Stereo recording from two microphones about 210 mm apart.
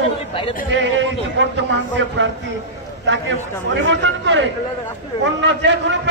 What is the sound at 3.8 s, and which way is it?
A man's voice, 60° right (ahead or behind).